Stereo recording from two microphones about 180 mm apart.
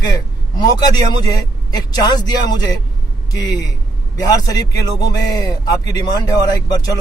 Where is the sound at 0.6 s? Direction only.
20° left (ahead or behind).